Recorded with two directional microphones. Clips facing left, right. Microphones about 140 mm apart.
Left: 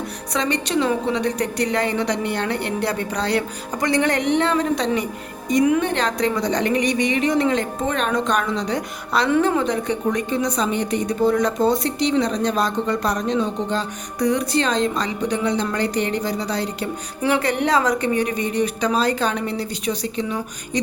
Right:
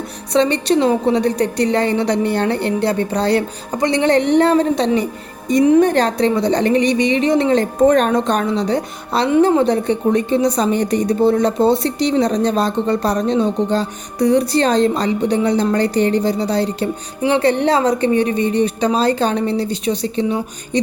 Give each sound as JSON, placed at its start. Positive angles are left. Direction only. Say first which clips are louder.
{"t": 0.3, "sound": "a woman's voice", "louder": "right 7 dB", "side_deg": -30}